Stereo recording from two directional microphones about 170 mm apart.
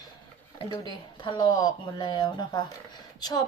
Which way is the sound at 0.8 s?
25° left (ahead or behind).